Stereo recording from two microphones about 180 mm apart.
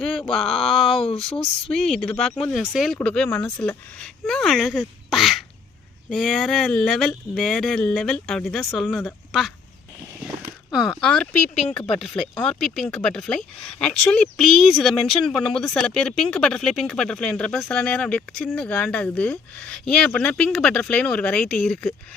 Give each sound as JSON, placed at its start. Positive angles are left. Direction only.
{"t": 0.0, "sound": "speech", "side_deg": 0}
{"t": 10.7, "sound": "speech", "side_deg": 0}
{"t": 11.5, "sound": "speech", "side_deg": 35}
{"t": 12.4, "sound": "speech", "side_deg": 0}